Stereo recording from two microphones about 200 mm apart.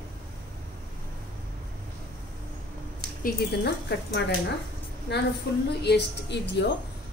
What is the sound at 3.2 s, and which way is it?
A woman's voice, 55° left (ahead or behind).